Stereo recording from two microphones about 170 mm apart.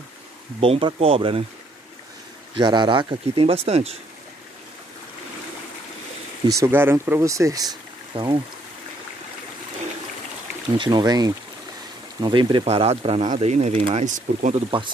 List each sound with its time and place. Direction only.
0.6 s speech: 30° right (ahead or behind)
2.5 s speech: 25° right (ahead or behind)
6.4 s speech: 20° right (ahead or behind)
10.8 s speech: 25° right (ahead or behind); by 14.5 s 45° right (ahead or behind)
14.5 s speech: 30° right (ahead or behind)